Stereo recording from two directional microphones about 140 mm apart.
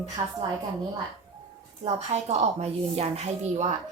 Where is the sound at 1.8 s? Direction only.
55° right (ahead or behind).